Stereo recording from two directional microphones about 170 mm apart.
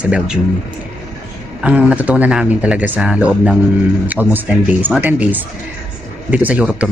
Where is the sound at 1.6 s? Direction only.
10° right (ahead or behind).